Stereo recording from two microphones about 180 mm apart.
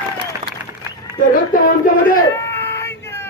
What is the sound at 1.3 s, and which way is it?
Speech, 50° left (ahead or behind).